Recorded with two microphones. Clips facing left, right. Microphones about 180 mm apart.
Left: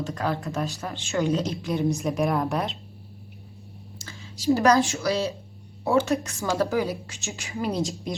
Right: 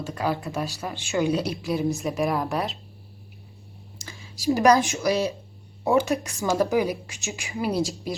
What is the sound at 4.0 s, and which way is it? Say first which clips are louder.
A woman's voice: even; 15° right (ahead or behind).